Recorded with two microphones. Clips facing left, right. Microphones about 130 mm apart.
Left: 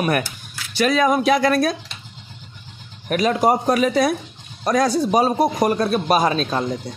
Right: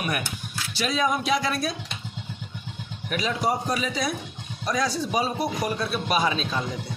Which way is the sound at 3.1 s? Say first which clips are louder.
Left 8 dB; 50° left (ahead or behind).